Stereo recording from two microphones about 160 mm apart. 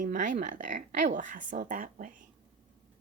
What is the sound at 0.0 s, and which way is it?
Speech, 55° right (ahead or behind).